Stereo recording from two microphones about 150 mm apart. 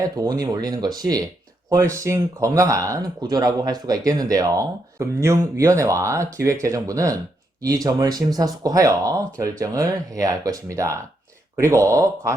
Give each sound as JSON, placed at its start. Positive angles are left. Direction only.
{"t": 0.0, "sound": "speech", "side_deg": -25}